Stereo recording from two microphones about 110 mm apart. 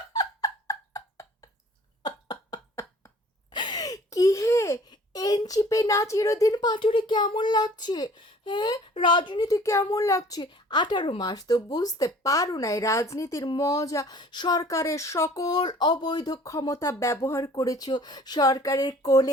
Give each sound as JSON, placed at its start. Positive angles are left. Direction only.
{"t": 0.1, "sound": "a sound", "side_deg": 35}
{"t": 2.0, "sound": "cough", "side_deg": 40}
{"t": 3.5, "sound": "a sound", "side_deg": 40}
{"t": 4.9, "sound": "speech", "side_deg": 35}
{"t": 9.5, "sound": "speech", "side_deg": 30}
{"t": 14.2, "sound": "speech", "side_deg": 45}
{"t": 17.5, "sound": "speech", "side_deg": 35}